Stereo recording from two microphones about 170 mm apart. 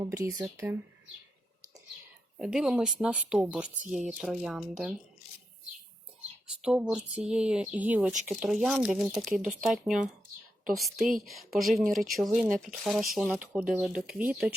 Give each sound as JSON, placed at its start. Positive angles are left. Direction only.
{"t": 0.0, "sound": "speech", "side_deg": -15}
{"t": 2.4, "sound": "speech", "side_deg": -5}
{"t": 6.6, "sound": "speech", "side_deg": -5}
{"t": 11.8, "sound": "speech", "side_deg": -50}
{"t": 12.0, "sound": "speech", "side_deg": 0}